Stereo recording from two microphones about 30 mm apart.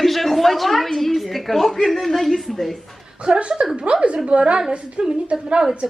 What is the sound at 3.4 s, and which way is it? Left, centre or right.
A woman's voice, right.